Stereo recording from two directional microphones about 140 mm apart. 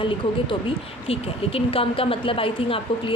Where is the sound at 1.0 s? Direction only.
45° left (ahead or behind).